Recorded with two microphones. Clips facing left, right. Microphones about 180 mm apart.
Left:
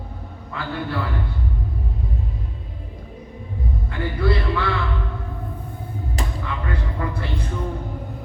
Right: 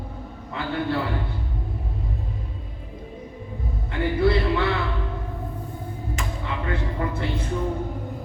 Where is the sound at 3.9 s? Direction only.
25° right (ahead or behind).